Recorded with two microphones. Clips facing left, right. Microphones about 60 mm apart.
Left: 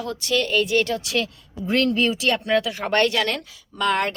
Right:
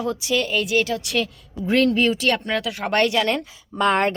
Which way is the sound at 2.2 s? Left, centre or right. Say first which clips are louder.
Left 1 dB; centre.